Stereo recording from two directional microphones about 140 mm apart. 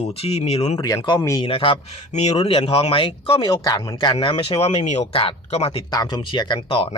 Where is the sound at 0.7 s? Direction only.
25° left (ahead or behind).